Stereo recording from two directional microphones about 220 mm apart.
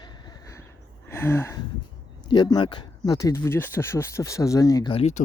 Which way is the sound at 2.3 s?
20° left (ahead or behind).